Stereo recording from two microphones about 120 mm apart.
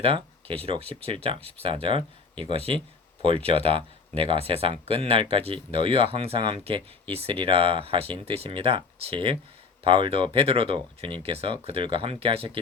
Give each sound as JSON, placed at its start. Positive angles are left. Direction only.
{"t": 0.0, "sound": "speech", "side_deg": -55}